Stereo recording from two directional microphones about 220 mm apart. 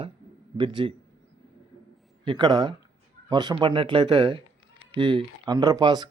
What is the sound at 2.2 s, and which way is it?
Speech, 20° right (ahead or behind).